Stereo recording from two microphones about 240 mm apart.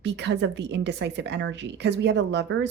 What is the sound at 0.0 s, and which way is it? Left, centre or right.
A woman's voice, right.